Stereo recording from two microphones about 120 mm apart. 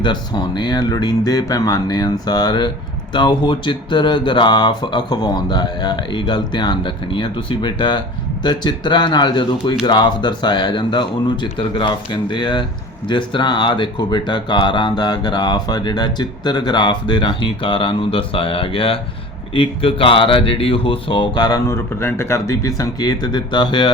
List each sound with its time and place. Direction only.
0.0 s speech: 40° left (ahead or behind)